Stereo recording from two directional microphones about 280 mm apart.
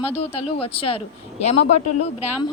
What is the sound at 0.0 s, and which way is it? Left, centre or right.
A woman's voice, left.